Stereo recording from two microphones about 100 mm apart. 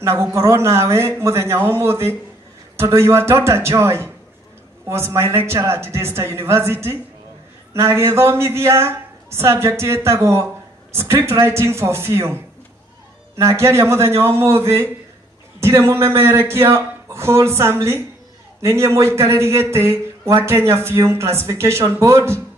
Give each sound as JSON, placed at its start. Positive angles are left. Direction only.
{"t": 0.0, "sound": "speech", "side_deg": -25}
{"t": 13.4, "sound": "speech", "side_deg": -30}